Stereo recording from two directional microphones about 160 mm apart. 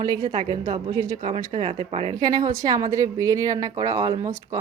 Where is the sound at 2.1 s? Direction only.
25° right (ahead or behind).